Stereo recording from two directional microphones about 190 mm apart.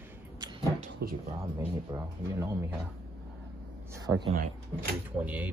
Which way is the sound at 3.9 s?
20° right (ahead or behind).